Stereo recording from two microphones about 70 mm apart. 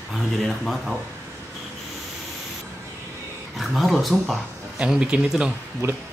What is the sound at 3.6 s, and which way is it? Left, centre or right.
Speech, centre.